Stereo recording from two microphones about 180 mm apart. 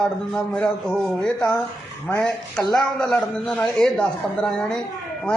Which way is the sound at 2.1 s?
5° left (ahead or behind).